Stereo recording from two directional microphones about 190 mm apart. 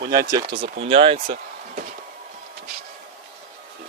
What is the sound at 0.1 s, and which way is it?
Speech, 20° right (ahead or behind).